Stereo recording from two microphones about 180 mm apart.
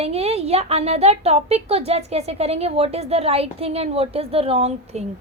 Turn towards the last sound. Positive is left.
turn(degrees=-35)  # may be behind; listen again after turning